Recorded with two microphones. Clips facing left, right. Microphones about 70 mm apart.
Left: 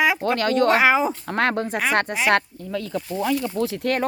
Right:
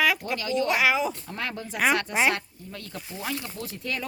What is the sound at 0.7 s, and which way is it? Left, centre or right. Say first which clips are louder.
Speech: left 5 dB; left.